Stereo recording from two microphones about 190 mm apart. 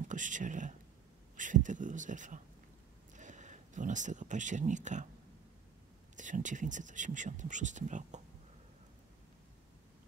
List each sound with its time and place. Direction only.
0.0 s speech: 40° right (ahead or behind)
3.2 s a sound: 40° right (ahead or behind)
6.1 s speech: 40° right (ahead or behind)